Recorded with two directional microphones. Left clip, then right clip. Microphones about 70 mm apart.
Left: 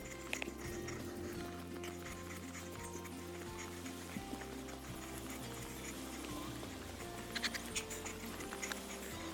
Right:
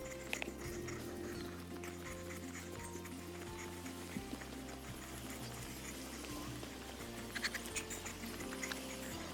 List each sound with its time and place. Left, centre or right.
7.3 s music: left